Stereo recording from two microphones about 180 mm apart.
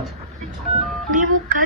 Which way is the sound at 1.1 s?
50° right (ahead or behind).